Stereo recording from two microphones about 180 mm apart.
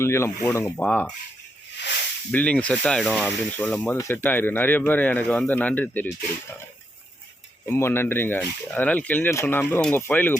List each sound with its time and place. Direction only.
0.0 s speech: 15° left (ahead or behind)
0.8 s speech: 5° left (ahead or behind)
2.3 s speech: 5° left (ahead or behind)
7.6 s speech: 15° left (ahead or behind)